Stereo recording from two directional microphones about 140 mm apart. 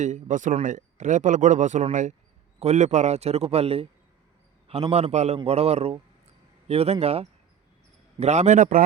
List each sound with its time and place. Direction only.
0.0 s speech: 65° right (ahead or behind)
2.6 s a man's voice: 55° right (ahead or behind)